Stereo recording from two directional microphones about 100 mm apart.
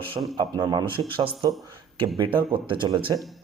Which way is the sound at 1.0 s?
65° right (ahead or behind).